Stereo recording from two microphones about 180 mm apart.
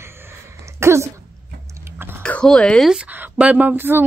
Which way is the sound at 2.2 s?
5° left (ahead or behind).